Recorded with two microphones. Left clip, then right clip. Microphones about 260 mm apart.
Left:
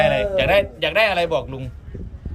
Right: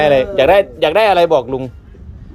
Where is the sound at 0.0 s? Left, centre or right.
Centre.